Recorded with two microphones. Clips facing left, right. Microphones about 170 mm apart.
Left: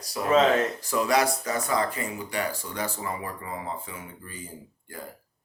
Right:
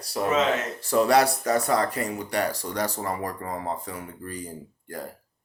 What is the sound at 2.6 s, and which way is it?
Speech, 35° right (ahead or behind).